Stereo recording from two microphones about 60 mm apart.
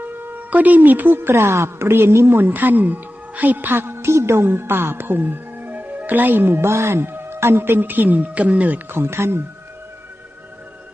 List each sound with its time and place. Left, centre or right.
0.0 s speech: right
2.4 s a woman's voice: right
9.0 s speech: right